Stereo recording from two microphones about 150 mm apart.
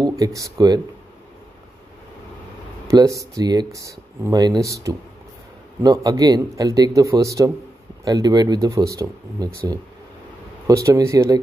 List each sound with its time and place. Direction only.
0.0 s speech: 25° right (ahead or behind)
2.9 s speech: 20° right (ahead or behind)